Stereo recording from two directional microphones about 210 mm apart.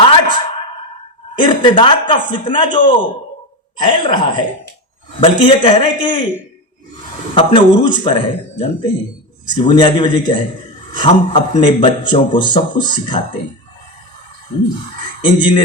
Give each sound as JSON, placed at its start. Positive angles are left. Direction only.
{"t": 0.0, "sound": "a sound", "side_deg": 25}
{"t": 1.4, "sound": "a man's voice", "side_deg": 20}
{"t": 7.3, "sound": "a man's voice", "side_deg": 25}